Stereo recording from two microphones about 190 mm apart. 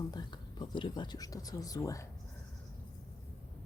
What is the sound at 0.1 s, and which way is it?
Speech, 20° left (ahead or behind).